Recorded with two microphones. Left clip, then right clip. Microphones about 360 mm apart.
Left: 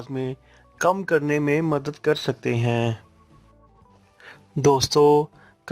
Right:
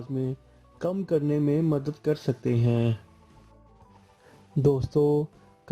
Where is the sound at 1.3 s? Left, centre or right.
Left.